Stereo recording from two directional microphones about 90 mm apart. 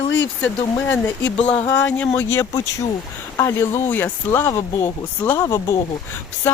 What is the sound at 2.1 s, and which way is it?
Speech, 25° left (ahead or behind).